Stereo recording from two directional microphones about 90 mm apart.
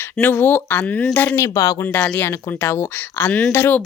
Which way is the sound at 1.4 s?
35° left (ahead or behind).